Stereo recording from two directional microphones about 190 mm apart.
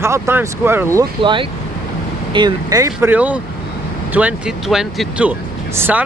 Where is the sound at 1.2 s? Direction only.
25° right (ahead or behind).